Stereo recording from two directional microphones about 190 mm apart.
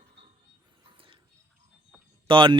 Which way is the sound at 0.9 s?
25° right (ahead or behind).